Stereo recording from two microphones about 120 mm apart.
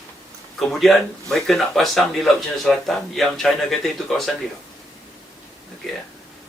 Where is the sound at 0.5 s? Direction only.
Centre (ahead or behind).